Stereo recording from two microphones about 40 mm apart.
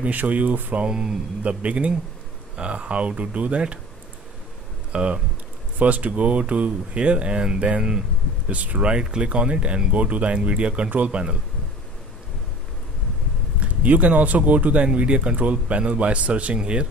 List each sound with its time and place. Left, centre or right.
0.0 s speech: right
0.7 s speech: right
1.4 s speech: right
4.9 s speech: right
5.8 s speech: right
13.6 s speech: right
15.0 s speech: right
16.5 s speech: right